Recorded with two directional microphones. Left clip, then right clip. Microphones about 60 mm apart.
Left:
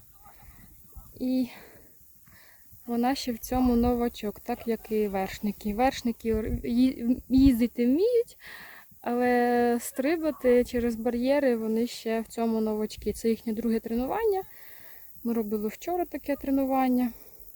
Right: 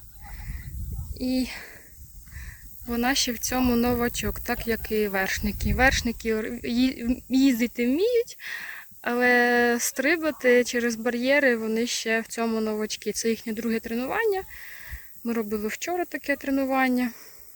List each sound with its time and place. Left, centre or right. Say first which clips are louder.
1.2 s speech: right 2 dB; centre
2.9 s speech: right 3 dB; centre; by 7.2 s left
7.3 s speech: even; left
9.0 s speech: right 4 dB; centre